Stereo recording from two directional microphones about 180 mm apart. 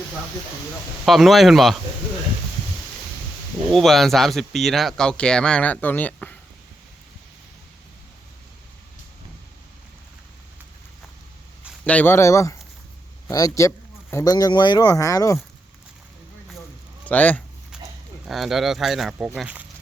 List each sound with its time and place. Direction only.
1.0 s speech: centre (ahead or behind)
3.7 s speech: centre (ahead or behind)
11.9 s speech: 10° left (ahead or behind)
17.1 s speech: 10° left (ahead or behind)
18.3 s speech: centre (ahead or behind)